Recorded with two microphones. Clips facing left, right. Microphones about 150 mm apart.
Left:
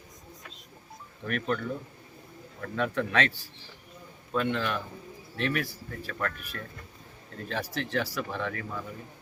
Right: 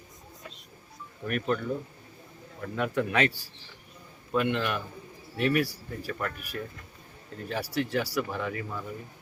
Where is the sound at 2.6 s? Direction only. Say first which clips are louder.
Right 1 dB; 10° right (ahead or behind).